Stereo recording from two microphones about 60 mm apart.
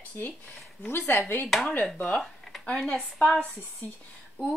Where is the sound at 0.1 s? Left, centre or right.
Left.